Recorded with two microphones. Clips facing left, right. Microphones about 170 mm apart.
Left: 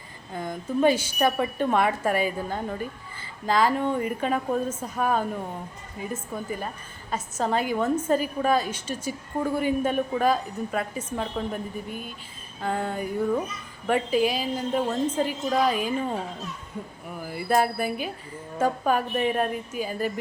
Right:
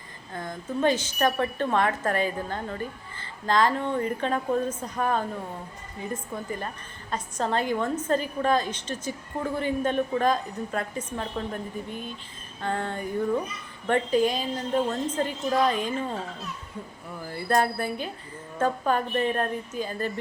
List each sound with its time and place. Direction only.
0.4 s a woman's voice: 10° left (ahead or behind)
6.3 s a woman's voice: 10° left (ahead or behind)
17.2 s a woman's voice: 10° left (ahead or behind)